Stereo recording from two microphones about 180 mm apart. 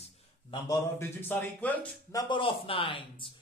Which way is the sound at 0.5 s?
20° left (ahead or behind).